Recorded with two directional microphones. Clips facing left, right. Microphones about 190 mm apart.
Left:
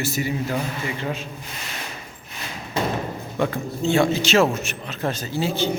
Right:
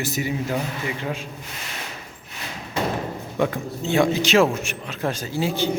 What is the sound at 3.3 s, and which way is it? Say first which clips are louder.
A man's voice: even; 15° right (ahead or behind).